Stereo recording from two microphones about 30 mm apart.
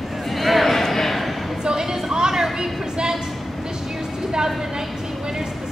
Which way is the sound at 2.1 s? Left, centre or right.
Centre.